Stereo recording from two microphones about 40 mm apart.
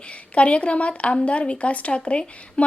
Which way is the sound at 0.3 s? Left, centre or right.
Left.